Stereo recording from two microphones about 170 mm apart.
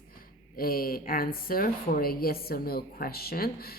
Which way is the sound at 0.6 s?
60° left (ahead or behind).